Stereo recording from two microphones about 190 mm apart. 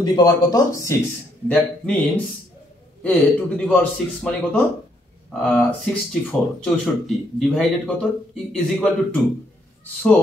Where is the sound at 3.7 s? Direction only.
5° left (ahead or behind).